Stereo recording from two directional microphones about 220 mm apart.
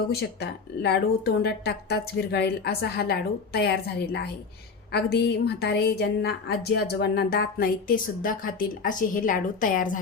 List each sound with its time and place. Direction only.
0.1 s a woman's voice: 45° left (ahead or behind)